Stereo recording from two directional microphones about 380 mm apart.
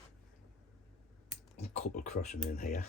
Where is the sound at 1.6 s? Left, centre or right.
Centre.